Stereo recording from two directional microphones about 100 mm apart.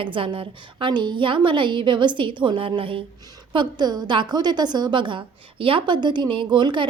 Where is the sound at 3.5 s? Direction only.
45° right (ahead or behind).